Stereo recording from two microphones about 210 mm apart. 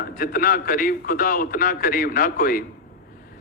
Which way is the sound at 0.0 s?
45° left (ahead or behind).